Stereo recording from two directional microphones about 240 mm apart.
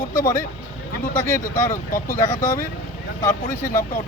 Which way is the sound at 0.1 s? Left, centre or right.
Centre.